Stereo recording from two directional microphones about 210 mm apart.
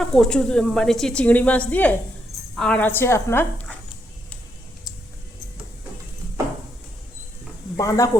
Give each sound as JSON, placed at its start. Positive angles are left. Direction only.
{"t": 0.0, "sound": "a woman's voice", "side_deg": 5}
{"t": 7.8, "sound": "a woman's voice", "side_deg": 15}